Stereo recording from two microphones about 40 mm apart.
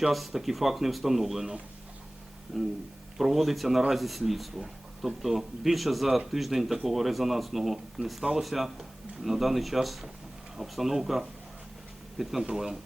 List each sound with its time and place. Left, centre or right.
0.0 s speech: centre
2.5 s speech: centre